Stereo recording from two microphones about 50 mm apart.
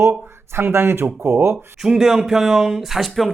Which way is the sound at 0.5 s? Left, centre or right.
Right.